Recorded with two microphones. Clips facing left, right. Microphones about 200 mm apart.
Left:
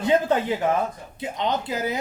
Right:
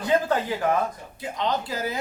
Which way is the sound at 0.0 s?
25° left (ahead or behind).